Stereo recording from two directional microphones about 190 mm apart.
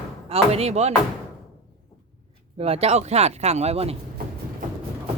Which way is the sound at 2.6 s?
30° right (ahead or behind).